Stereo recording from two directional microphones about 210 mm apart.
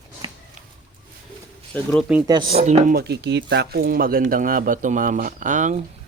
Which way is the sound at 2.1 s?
5° right (ahead or behind).